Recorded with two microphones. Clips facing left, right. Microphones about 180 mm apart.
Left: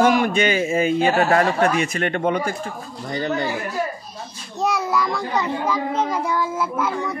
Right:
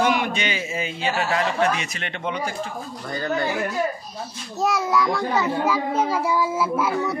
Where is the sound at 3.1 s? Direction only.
20° left (ahead or behind).